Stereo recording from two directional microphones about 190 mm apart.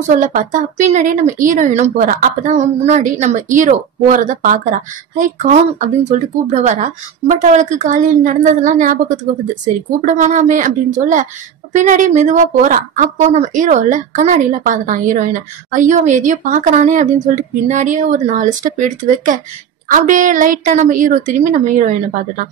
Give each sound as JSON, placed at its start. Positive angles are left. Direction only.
{"t": 0.1, "sound": "a woman's voice", "side_deg": -45}